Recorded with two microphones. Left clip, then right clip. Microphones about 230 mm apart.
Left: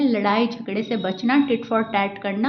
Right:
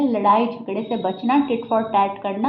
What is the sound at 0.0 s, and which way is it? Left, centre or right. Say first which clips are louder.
A woman's voice: right 3 dB; left.